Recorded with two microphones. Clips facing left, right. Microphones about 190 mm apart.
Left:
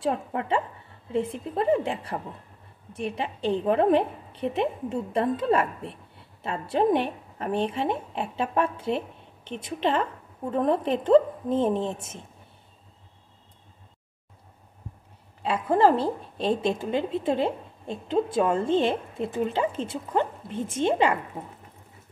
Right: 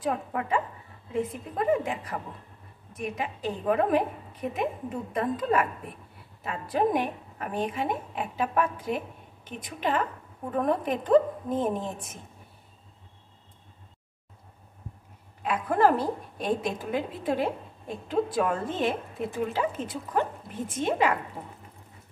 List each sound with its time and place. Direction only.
0.0 s a woman's voice: 30° left (ahead or behind)
11.5 s a woman's voice: 10° right (ahead or behind)
15.4 s a woman's voice: 25° left (ahead or behind)